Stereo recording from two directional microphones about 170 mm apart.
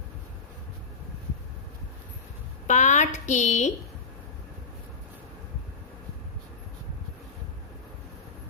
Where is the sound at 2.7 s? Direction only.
45° left (ahead or behind).